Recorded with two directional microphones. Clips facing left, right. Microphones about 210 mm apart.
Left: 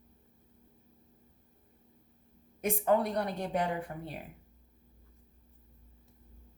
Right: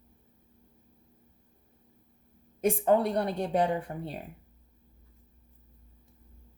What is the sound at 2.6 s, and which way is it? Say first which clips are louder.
A woman's voice: right 4 dB; 30° right (ahead or behind).